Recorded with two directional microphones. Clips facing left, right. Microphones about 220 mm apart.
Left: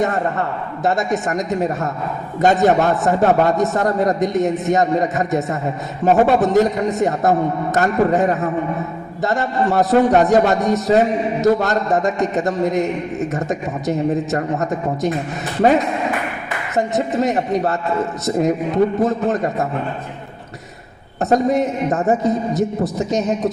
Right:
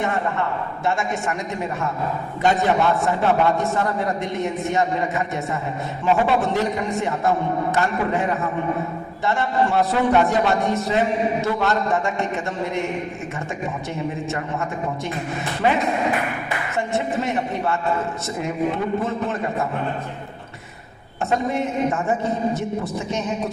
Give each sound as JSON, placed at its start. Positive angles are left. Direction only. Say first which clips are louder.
{"t": 0.0, "sound": "a man's voice", "louder": "left 4 dB", "side_deg": 40}
{"t": 16.7, "sound": "a man's voice", "louder": "left 6 dB", "side_deg": 40}
{"t": 19.0, "sound": "a man's voice", "louder": "left 6 dB", "side_deg": 40}
{"t": 21.2, "sound": "a man's voice", "louder": "left 6 dB", "side_deg": 40}